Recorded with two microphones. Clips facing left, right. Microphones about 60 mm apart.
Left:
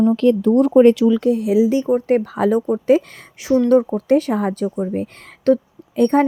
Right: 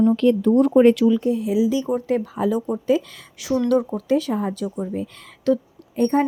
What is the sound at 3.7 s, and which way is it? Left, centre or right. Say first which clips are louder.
Speech: left 5 dB; left.